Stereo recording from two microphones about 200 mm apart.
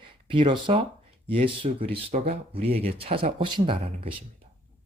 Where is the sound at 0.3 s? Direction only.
25° right (ahead or behind).